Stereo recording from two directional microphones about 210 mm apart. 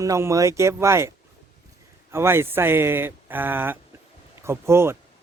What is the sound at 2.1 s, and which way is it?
Speech, 10° right (ahead or behind).